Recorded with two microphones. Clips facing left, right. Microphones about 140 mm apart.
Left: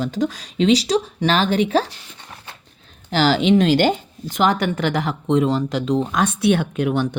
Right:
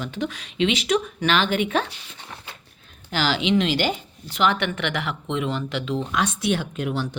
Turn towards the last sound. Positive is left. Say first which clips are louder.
# left 6 dB
turn(degrees=60)  # may be behind; listen again after turning